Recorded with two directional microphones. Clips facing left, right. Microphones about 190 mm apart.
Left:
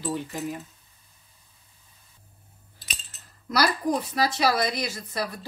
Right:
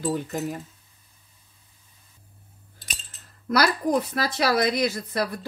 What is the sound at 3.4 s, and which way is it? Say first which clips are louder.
Speech: right 2 dB; 55° right (ahead or behind).